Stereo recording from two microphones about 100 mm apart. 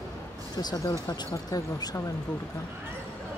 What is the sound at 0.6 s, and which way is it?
Speech, 45° left (ahead or behind).